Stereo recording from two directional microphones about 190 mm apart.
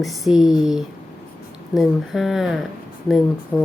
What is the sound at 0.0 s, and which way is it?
Speech, centre (ahead or behind).